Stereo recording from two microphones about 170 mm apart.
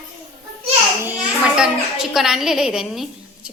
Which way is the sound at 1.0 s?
5° right (ahead or behind).